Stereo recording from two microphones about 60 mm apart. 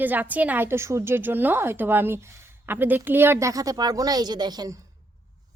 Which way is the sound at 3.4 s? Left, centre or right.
Right.